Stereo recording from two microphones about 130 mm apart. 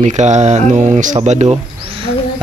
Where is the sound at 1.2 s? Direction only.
55° right (ahead or behind).